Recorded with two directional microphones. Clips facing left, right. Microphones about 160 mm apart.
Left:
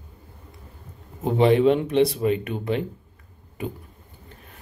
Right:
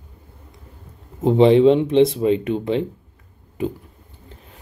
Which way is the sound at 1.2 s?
25° right (ahead or behind).